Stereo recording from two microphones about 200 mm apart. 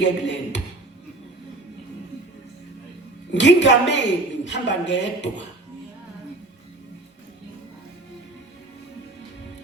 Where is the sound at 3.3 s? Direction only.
60° left (ahead or behind).